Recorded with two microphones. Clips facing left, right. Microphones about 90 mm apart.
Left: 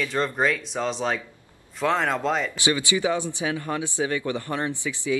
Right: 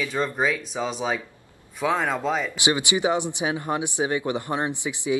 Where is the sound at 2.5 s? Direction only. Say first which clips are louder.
Right 1 dB; 20° right (ahead or behind).